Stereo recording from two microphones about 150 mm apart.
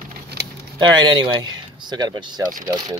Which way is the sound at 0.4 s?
90° right.